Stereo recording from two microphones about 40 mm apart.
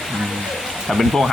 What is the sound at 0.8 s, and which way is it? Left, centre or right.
Speech, centre.